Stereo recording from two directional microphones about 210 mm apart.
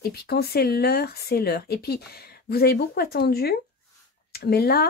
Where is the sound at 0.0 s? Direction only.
50° left (ahead or behind).